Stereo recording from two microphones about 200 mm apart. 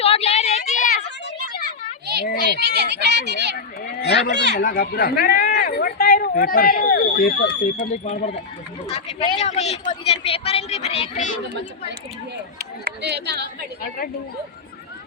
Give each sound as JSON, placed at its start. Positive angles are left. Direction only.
{"t": 0.0, "sound": "a sound", "side_deg": 30}
{"t": 2.2, "sound": "children playing", "side_deg": 50}
{"t": 2.6, "sound": "speech", "side_deg": -60}
{"t": 4.0, "sound": "speech", "side_deg": 60}
{"t": 4.6, "sound": "speech", "side_deg": 45}
{"t": 8.0, "sound": "speech", "side_deg": 35}
{"t": 12.5, "sound": "speech", "side_deg": -55}